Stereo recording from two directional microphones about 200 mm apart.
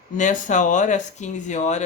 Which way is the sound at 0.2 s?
40° left (ahead or behind).